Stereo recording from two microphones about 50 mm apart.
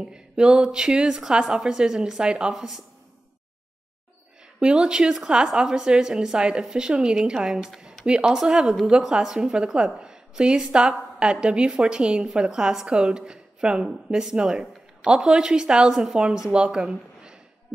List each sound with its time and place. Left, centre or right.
0.0 s a woman's voice: centre
2.5 s a woman's voice: centre
4.6 s a woman's voice: centre